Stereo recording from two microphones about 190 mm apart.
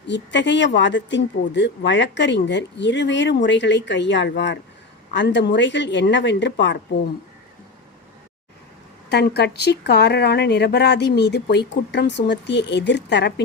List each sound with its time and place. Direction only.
0.1 s speech: 70° left (ahead or behind)
9.0 s speech: 60° left (ahead or behind)